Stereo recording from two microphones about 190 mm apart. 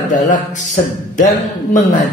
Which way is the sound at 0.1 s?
45° left (ahead or behind).